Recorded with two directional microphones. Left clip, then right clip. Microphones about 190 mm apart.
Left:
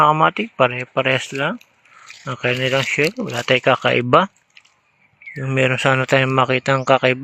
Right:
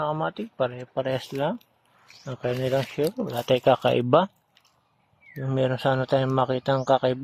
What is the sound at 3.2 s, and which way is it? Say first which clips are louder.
Speech: left 5 dB; 25° left (ahead or behind).